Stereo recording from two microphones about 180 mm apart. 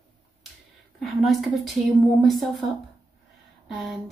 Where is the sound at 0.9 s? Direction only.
Centre (ahead or behind).